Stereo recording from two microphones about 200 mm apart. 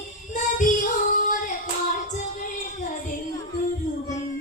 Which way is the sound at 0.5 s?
40° left (ahead or behind).